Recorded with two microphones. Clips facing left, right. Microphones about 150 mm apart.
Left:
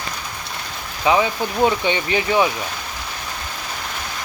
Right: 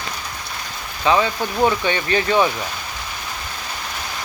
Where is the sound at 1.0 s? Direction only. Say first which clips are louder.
Even; 15° left (ahead or behind).